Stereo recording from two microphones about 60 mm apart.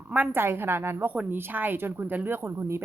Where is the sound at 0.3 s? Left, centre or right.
Right.